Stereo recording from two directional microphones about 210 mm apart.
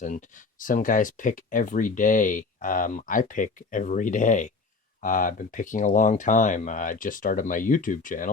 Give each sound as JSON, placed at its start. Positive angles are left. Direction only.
{"t": 0.6, "sound": "speech", "side_deg": 40}